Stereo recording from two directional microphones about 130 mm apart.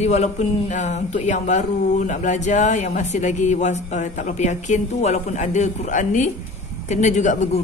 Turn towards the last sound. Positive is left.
turn(degrees=65)  # may be behind; listen again after turning